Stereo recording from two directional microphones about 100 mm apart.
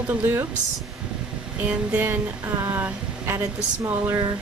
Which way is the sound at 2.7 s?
20° right (ahead or behind).